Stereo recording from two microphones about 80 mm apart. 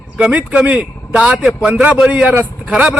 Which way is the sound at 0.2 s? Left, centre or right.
Centre.